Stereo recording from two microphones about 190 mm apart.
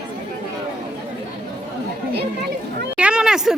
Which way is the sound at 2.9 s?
5° right (ahead or behind).